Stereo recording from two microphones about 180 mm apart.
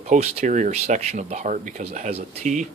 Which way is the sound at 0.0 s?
35° right (ahead or behind).